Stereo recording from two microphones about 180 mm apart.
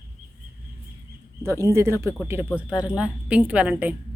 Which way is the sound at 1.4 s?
15° right (ahead or behind).